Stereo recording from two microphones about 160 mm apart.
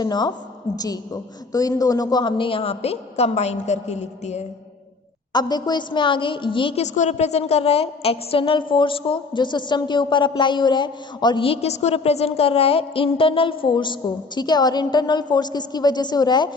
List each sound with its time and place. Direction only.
0.0 s a woman's voice: 25° left (ahead or behind)
1.5 s a woman's voice: 20° left (ahead or behind); by 4.4 s 45° left (ahead or behind)
5.3 s a woman's voice: 25° left (ahead or behind)